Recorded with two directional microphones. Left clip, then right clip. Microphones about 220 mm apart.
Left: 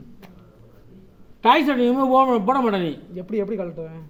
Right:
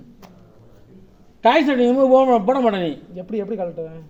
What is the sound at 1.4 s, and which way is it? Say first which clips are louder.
Speech: right 2 dB; 15° left (ahead or behind).